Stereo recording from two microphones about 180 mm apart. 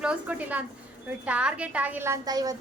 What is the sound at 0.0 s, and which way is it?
A woman's voice, 5° right (ahead or behind).